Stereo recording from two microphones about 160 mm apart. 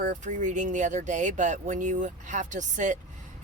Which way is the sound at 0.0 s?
55° right (ahead or behind).